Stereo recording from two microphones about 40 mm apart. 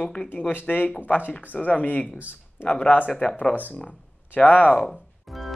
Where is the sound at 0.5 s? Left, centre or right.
Left.